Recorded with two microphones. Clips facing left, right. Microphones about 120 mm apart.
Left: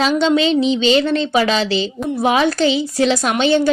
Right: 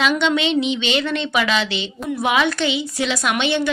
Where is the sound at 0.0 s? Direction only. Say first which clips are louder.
Left 4 dB; 35° left (ahead or behind).